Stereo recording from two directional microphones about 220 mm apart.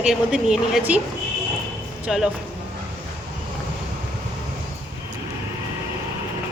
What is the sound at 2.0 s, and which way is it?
Speech, 5° right (ahead or behind).